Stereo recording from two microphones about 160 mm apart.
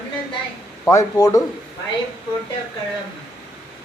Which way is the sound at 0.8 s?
20° left (ahead or behind).